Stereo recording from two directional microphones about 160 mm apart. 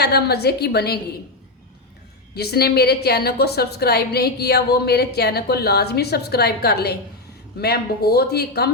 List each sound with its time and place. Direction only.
0.0 s a woman's voice: 90° left
2.3 s a woman's voice: 85° left